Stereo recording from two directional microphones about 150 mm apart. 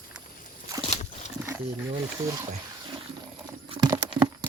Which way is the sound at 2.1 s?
25° right (ahead or behind).